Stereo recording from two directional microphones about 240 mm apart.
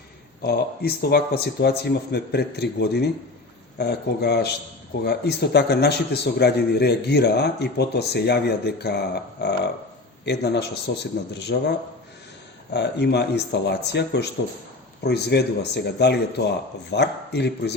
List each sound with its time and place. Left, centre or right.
0.4 s a man's voice: left
12.7 s a man's voice: left